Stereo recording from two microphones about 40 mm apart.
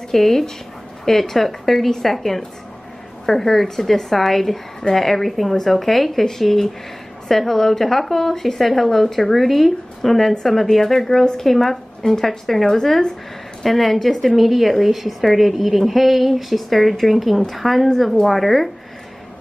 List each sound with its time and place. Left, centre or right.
0.1 s a woman's voice: centre